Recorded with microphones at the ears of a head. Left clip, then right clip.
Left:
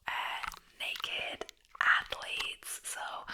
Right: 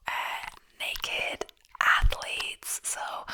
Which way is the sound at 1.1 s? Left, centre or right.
Right.